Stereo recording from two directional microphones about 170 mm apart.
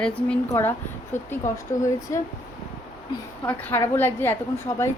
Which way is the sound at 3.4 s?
10° left (ahead or behind).